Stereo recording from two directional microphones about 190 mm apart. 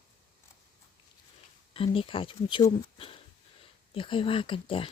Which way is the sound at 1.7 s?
30° left (ahead or behind).